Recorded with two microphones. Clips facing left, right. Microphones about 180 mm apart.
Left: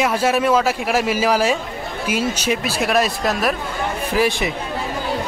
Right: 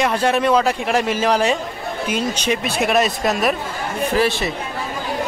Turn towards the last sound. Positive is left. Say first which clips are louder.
# even
turn(degrees=15)  # may be behind; listen again after turning